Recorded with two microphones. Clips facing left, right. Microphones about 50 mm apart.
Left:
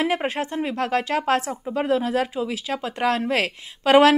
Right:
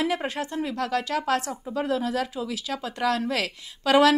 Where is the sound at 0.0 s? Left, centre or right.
Left.